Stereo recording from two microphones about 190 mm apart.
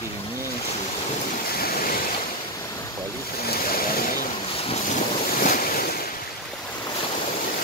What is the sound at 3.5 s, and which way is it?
Vehicle, 50° left (ahead or behind).